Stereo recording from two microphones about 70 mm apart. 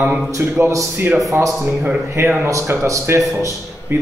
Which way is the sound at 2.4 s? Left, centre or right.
Right.